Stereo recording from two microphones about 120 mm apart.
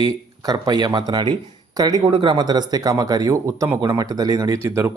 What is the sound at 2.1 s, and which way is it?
Speech, 45° right (ahead or behind).